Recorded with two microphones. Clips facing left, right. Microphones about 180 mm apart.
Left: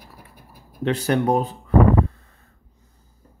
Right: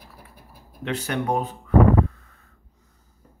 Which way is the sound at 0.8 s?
35° left (ahead or behind).